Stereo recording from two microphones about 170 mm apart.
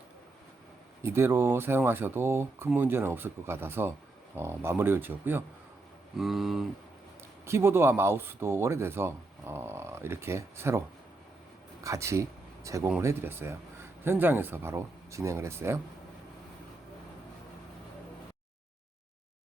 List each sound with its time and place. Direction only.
1.0 s speech: 15° right (ahead or behind)
6.1 s speech: centre (ahead or behind)
7.4 s speech: 15° right (ahead or behind)